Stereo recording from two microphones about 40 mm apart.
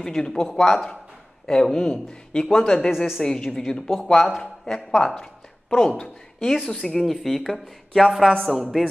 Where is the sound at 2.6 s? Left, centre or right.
Centre.